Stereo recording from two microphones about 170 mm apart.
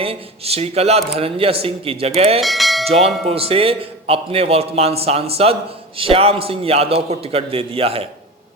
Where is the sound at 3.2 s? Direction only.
35° right (ahead or behind).